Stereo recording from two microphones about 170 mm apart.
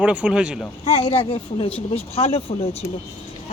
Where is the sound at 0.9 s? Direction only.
35° left (ahead or behind).